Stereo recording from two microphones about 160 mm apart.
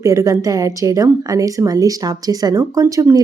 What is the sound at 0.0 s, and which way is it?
A woman's voice, 20° right (ahead or behind).